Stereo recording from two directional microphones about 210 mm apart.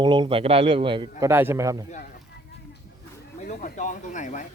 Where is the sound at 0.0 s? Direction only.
20° right (ahead or behind).